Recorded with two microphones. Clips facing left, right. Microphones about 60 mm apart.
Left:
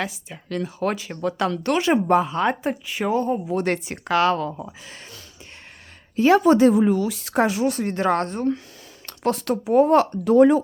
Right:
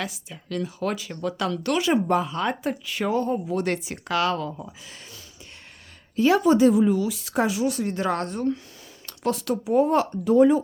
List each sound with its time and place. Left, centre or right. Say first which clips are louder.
0.0 s speech: left 3 dB; left
2.8 s a woman's voice: left 2 dB; centre
3.3 s speech: left 2 dB; left
3.6 s speech: left 2 dB; left
6.1 s speech: left 3 dB; left